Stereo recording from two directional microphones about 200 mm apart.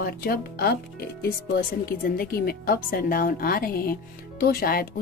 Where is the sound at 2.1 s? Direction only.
50° left (ahead or behind).